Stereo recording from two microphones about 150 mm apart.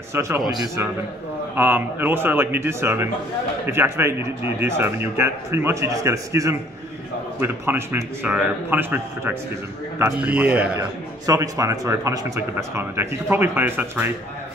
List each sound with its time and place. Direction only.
0.1 s a man's voice: 20° right (ahead or behind)
1.5 s speech: 15° right (ahead or behind)
10.7 s a man's voice: 25° right (ahead or behind)